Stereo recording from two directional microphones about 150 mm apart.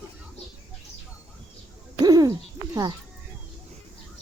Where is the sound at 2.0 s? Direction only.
25° right (ahead or behind).